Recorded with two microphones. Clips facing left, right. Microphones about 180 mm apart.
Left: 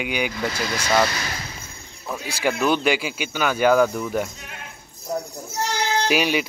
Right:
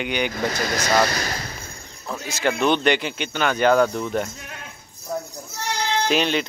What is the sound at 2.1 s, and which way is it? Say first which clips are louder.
Speech: even; 10° left (ahead or behind).